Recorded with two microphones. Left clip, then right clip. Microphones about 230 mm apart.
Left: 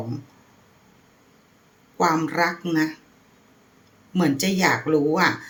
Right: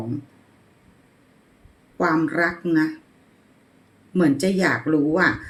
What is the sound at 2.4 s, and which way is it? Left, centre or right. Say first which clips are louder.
Speech: right 1 dB; left.